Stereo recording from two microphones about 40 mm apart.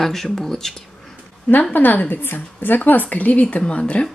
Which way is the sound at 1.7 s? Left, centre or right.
Left.